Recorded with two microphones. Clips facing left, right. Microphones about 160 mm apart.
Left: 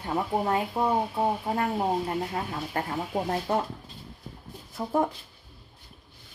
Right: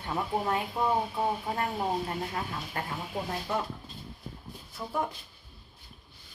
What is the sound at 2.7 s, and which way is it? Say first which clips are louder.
Speech: left 5 dB; 40° left (ahead or behind).